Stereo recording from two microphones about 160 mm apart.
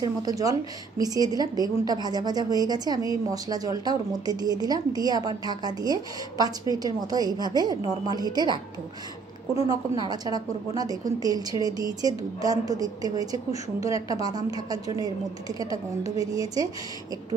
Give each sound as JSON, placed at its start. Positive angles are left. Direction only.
{"t": 0.0, "sound": "a woman's voice", "side_deg": -25}
{"t": 9.7, "sound": "a woman's voice", "side_deg": -25}